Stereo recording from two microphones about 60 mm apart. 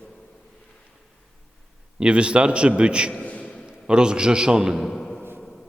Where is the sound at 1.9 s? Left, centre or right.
Centre.